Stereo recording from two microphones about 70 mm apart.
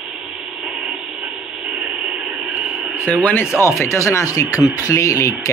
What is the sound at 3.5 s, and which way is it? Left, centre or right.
Speech, left.